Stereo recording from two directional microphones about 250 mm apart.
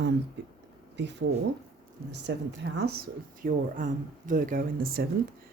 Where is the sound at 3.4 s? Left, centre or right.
Right.